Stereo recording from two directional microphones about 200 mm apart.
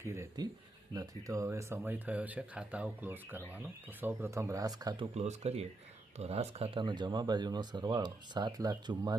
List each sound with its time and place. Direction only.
0.0 s speech: 15° right (ahead or behind)
5.1 s speech: 35° right (ahead or behind)